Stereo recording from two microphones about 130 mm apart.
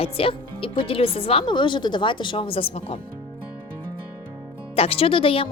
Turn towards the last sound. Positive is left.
turn(degrees=45)  # may be behind; listen again after turning